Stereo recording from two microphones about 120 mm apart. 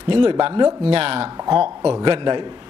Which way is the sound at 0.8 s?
50° right (ahead or behind).